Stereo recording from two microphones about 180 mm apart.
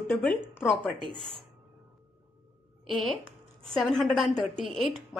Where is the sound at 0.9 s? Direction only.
25° right (ahead or behind).